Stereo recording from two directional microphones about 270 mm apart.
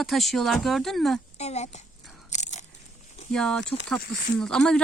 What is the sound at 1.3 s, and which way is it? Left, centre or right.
Speech, left.